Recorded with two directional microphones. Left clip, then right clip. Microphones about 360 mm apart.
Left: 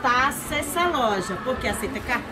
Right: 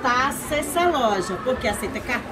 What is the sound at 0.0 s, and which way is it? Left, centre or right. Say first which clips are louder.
A woman's voice: even; centre.